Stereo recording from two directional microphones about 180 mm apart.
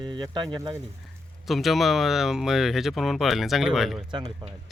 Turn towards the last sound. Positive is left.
turn(degrees=-30)  # may be behind; listen again after turning